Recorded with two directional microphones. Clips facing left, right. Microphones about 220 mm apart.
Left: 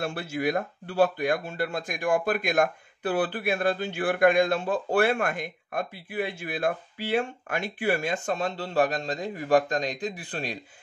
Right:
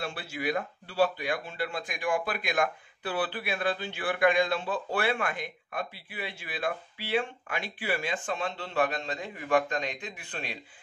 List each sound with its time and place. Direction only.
0.0 s speech: 45° left (ahead or behind)